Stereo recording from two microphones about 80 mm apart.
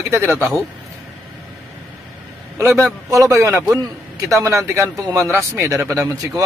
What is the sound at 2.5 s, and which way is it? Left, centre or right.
Speech, right.